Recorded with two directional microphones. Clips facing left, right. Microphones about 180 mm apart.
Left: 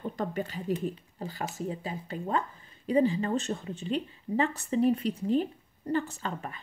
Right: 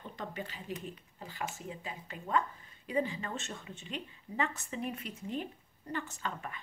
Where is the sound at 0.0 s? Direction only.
45° left (ahead or behind).